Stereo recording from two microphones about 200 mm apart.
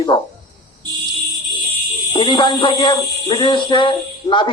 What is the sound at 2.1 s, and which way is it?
Speech, 25° left (ahead or behind).